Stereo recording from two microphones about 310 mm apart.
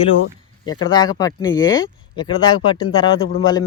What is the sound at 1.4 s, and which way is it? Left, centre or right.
Speech, left.